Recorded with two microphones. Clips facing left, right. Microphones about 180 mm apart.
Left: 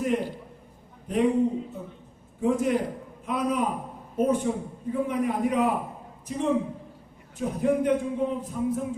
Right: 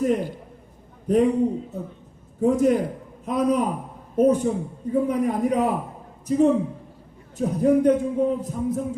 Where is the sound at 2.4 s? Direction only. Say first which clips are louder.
Right 5 dB; 40° right (ahead or behind).